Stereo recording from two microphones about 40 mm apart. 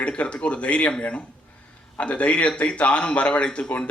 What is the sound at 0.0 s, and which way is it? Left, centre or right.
Speech, left.